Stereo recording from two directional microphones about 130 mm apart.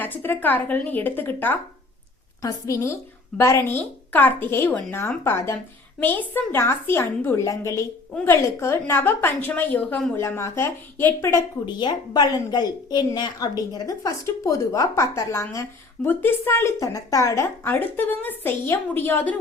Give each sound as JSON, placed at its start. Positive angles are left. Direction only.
{"t": 0.0, "sound": "a woman's voice", "side_deg": 15}
{"t": 11.6, "sound": "a woman's voice", "side_deg": 35}